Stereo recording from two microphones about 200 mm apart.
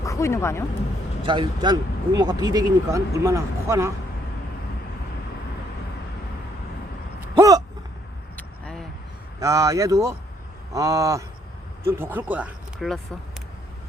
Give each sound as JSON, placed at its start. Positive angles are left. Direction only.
{"t": 0.0, "sound": "speech", "side_deg": 15}
{"t": 1.2, "sound": "speech", "side_deg": -25}
{"t": 7.2, "sound": "a sound", "side_deg": -15}
{"t": 8.4, "sound": "vehicle", "side_deg": 5}
{"t": 9.4, "sound": "speech", "side_deg": -15}